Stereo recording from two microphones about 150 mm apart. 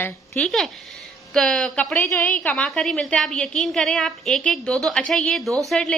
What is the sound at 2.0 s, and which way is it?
Speech, 15° left (ahead or behind).